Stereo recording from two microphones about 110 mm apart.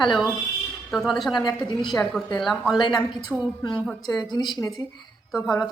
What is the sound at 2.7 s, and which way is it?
A woman's voice, 45° left (ahead or behind).